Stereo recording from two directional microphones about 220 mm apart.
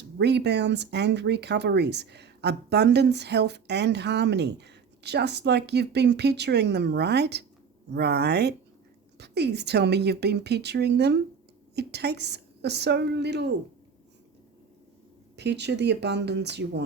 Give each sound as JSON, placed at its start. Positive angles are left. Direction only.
{"t": 0.2, "sound": "speech", "side_deg": -50}
{"t": 15.4, "sound": "speech", "side_deg": -50}